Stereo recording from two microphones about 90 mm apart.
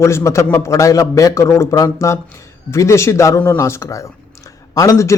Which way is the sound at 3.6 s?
30° left (ahead or behind).